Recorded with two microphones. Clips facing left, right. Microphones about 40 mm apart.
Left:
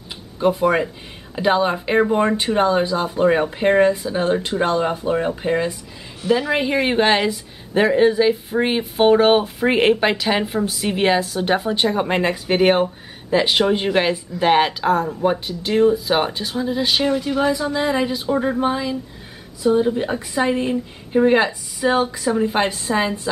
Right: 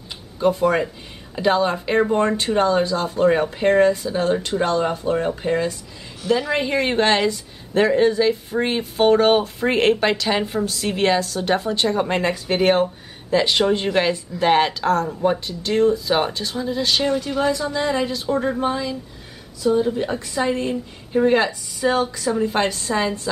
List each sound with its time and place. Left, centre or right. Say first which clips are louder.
0.4 s speech: left 1 dB; centre